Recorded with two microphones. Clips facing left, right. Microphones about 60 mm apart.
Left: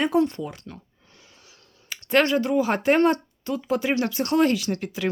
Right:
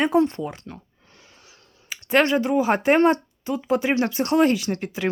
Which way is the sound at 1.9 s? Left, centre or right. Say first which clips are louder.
Right 1 dB; centre.